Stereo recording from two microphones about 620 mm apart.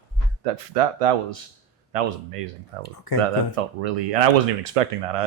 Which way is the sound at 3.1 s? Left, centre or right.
Right.